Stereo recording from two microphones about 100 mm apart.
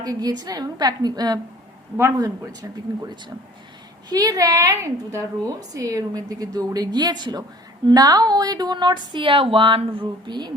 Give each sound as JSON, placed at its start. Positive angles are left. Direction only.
{"t": 0.0, "sound": "a woman's voice", "side_deg": -40}